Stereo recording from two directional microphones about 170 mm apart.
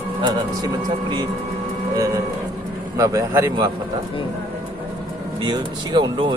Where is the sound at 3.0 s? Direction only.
15° right (ahead or behind).